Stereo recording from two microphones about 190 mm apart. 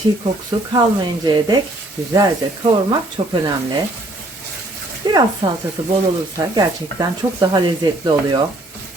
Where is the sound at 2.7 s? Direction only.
25° right (ahead or behind).